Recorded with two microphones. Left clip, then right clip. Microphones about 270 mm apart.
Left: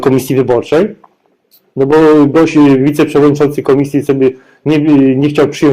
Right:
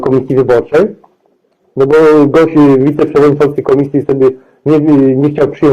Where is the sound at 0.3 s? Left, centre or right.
Left.